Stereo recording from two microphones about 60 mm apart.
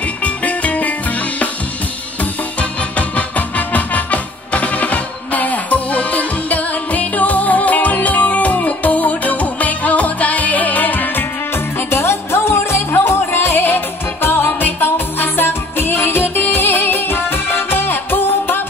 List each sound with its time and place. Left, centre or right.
0.2 s music: left
3.0 s music: left